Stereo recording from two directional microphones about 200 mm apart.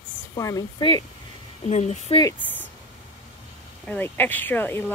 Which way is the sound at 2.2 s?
10° left (ahead or behind).